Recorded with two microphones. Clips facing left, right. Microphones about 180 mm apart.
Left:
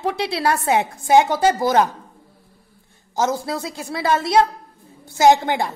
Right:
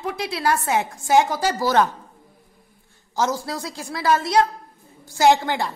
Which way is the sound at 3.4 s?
20° left (ahead or behind).